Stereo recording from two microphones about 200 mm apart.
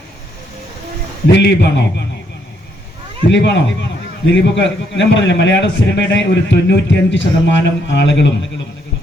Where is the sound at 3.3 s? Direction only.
60° left (ahead or behind).